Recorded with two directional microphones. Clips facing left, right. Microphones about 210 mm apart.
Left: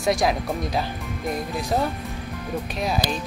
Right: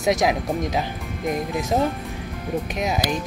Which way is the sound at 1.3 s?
20° right (ahead or behind).